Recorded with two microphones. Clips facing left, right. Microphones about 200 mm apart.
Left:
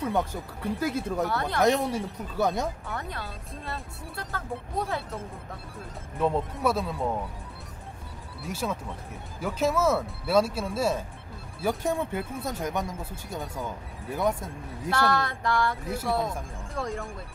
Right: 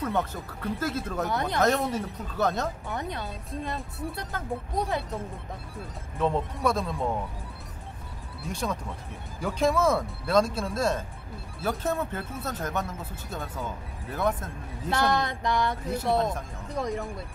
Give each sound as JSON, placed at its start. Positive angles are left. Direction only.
{"t": 0.0, "sound": "speech", "side_deg": 10}
{"t": 1.3, "sound": "speech", "side_deg": -20}
{"t": 1.6, "sound": "speech", "side_deg": 10}
{"t": 2.9, "sound": "speech", "side_deg": -20}
{"t": 6.1, "sound": "speech", "side_deg": 10}
{"t": 8.5, "sound": "speech", "side_deg": 5}
{"t": 14.9, "sound": "speech", "side_deg": -20}